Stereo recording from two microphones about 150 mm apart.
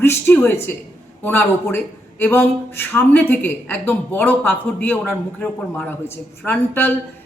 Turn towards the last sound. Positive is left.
turn(degrees=15)  # may be behind; listen again after turning